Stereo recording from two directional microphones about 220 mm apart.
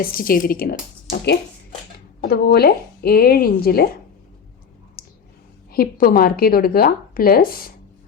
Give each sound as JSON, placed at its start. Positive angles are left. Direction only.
{"t": 0.0, "sound": "a woman's voice", "side_deg": 40}
{"t": 5.0, "sound": "clicking", "side_deg": 45}
{"t": 5.7, "sound": "a woman's voice", "side_deg": 40}